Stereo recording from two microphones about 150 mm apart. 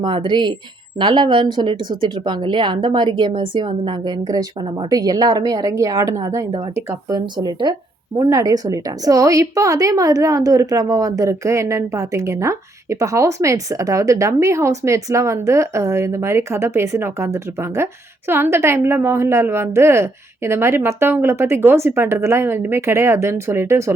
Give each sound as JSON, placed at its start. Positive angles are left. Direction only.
{"t": 0.0, "sound": "a woman's voice", "side_deg": -30}